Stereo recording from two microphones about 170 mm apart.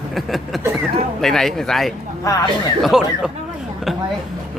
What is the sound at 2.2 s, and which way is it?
Speech, 20° left (ahead or behind).